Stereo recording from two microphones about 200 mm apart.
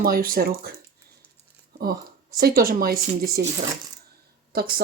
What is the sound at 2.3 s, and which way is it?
Speech, 50° right (ahead or behind).